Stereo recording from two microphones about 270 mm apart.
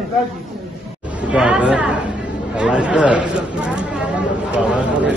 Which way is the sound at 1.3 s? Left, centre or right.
Centre.